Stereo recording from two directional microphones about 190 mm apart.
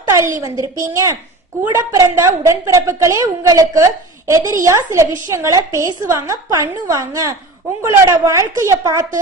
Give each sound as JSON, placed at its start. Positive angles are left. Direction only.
{"t": 0.1, "sound": "a woman's voice", "side_deg": -15}